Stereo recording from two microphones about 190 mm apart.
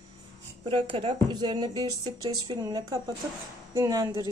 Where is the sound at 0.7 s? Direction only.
25° right (ahead or behind).